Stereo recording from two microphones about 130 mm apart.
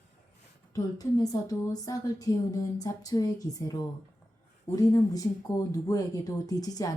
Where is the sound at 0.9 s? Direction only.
30° left (ahead or behind).